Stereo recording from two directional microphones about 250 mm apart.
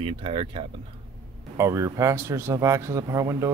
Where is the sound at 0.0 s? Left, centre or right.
Right.